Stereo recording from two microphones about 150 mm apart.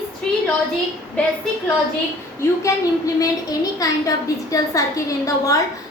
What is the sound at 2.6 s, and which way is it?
A woman's voice, 25° left (ahead or behind).